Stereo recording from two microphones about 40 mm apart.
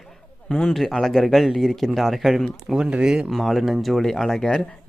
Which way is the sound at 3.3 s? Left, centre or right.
Centre.